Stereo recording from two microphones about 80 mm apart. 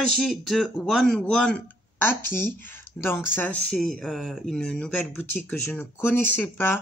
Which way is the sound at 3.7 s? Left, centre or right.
Centre.